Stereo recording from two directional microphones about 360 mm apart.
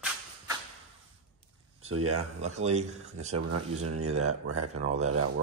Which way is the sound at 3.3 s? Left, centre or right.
Right.